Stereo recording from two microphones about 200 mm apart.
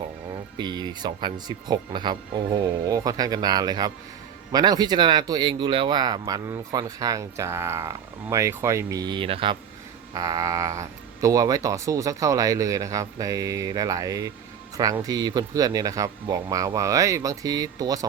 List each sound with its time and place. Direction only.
0.5 s speech: 20° right (ahead or behind)
10.2 s speech: 15° right (ahead or behind)